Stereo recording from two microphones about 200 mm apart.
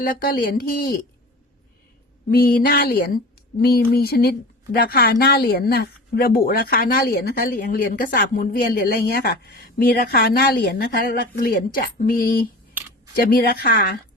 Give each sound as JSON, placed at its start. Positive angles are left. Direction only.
{"t": 0.2, "sound": "a woman's voice", "side_deg": 45}
{"t": 2.3, "sound": "a woman's voice", "side_deg": 50}